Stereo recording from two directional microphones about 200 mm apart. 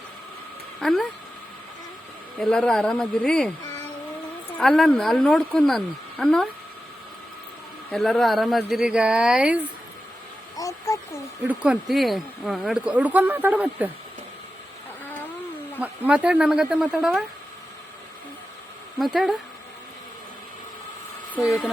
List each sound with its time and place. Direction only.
0.8 s speech: centre (ahead or behind)
2.4 s speech: 5° left (ahead or behind)
4.5 s speech: centre (ahead or behind)
7.9 s speech: centre (ahead or behind)
10.6 s a sound: 15° left (ahead or behind)
11.4 s speech: 5° right (ahead or behind)
15.8 s speech: 5° right (ahead or behind)
18.9 s speech: centre (ahead or behind)
21.4 s speech: centre (ahead or behind)